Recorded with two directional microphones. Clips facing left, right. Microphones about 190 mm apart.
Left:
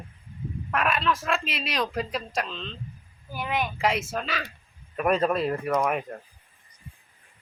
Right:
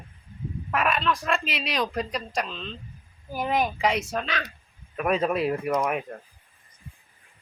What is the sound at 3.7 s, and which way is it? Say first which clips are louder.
Speech: right 1 dB; centre (ahead or behind).